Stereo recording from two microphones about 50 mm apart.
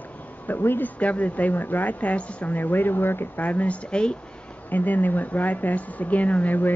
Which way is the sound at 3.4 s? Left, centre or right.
Left.